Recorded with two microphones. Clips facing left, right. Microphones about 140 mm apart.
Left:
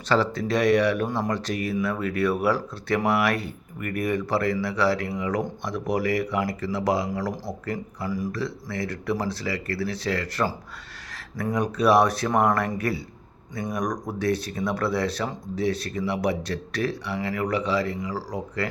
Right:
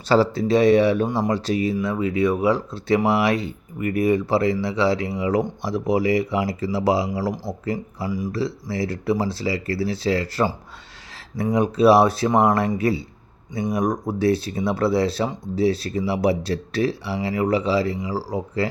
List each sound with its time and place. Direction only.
0.1 s speech: 30° right (ahead or behind)
1.6 s speech: 15° right (ahead or behind)
8.3 s speech: 30° right (ahead or behind)
11.5 s speech: 30° right (ahead or behind)
12.3 s speech: 10° right (ahead or behind)
12.7 s speech: 25° right (ahead or behind)